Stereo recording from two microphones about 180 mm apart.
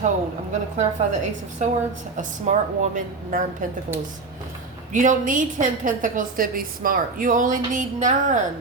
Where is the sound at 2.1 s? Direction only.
40° right (ahead or behind).